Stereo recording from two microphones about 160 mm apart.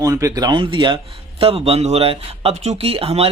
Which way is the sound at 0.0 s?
20° right (ahead or behind).